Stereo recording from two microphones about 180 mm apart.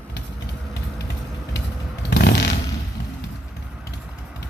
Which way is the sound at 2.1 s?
65° left (ahead or behind).